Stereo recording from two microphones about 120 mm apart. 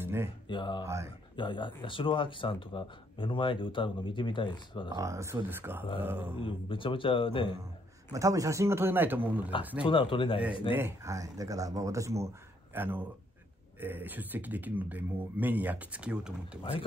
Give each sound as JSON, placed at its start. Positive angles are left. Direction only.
{"t": 0.0, "sound": "a sound", "side_deg": -20}
{"t": 0.5, "sound": "speech", "side_deg": 40}
{"t": 0.8, "sound": "speech", "side_deg": -25}
{"t": 1.3, "sound": "speech", "side_deg": 40}
{"t": 4.9, "sound": "a man's voice", "side_deg": -25}
{"t": 6.3, "sound": "speech", "side_deg": 45}
{"t": 8.1, "sound": "speech", "side_deg": -30}
{"t": 9.8, "sound": "speech", "side_deg": 45}
{"t": 10.8, "sound": "a man's voice", "side_deg": -25}